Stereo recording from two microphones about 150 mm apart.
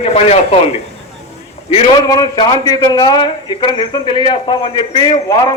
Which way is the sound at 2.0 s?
25° left (ahead or behind).